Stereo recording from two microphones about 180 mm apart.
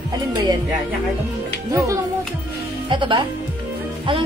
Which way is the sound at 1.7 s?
15° right (ahead or behind).